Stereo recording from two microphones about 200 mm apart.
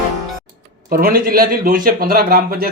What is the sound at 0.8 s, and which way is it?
Speech, 45° right (ahead or behind).